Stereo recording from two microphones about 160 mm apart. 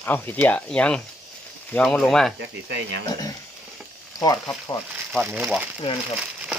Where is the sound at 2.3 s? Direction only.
90° right.